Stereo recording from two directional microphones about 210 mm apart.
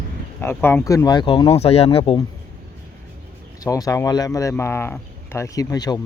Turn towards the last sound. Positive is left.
turn(degrees=20)  # may be behind; listen again after turning